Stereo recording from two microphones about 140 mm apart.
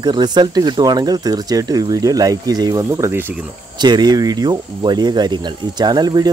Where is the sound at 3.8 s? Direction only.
30° right (ahead or behind).